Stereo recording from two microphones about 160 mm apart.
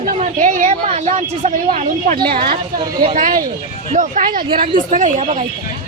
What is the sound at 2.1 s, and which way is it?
Speech, 70° right (ahead or behind).